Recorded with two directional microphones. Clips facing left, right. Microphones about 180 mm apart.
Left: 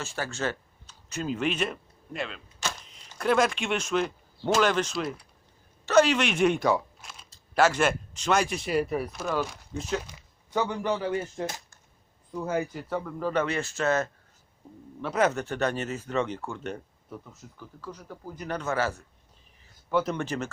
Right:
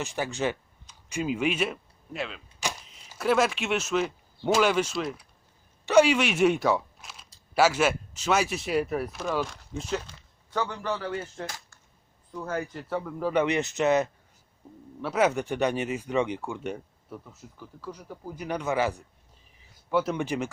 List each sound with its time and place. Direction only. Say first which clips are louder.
0.0 s speech: right 3 dB; 15° right (ahead or behind)
5.8 s speech: right 1 dB; 10° right (ahead or behind)
10.1 s a sound: left 4 dB; 10° left (ahead or behind)
10.8 s speech: left 3 dB; 15° left (ahead or behind); by 20.5 s 10° right (ahead or behind)